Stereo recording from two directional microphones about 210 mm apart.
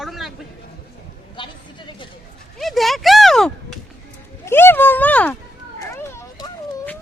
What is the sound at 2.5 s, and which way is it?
Speech, centre (ahead or behind).